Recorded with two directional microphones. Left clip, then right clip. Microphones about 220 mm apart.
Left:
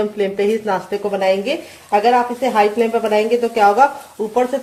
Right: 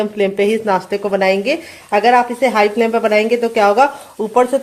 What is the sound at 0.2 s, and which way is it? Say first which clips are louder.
Speech: right 5 dB; 30° right (ahead or behind).